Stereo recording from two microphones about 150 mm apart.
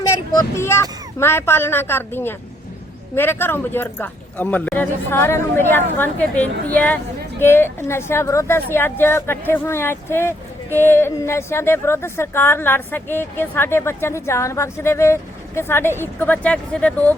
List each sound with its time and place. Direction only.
0.1 s speech: 20° left (ahead or behind)